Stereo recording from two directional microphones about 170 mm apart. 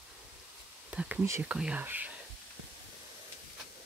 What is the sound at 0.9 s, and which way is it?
Speech, 5° right (ahead or behind).